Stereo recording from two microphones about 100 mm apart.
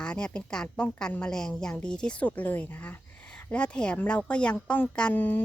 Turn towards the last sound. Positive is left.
turn(degrees=20)  # may be behind; listen again after turning